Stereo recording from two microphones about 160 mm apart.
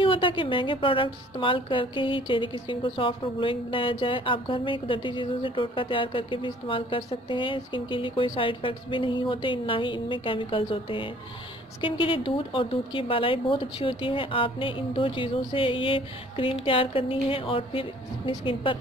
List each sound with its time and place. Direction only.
0.0 s a woman's voice: 30° left (ahead or behind)